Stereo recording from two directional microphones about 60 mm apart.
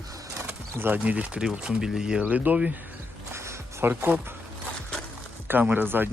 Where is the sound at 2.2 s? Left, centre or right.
Right.